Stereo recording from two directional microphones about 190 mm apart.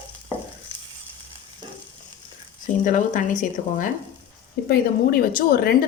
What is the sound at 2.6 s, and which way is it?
Speech, 45° left (ahead or behind).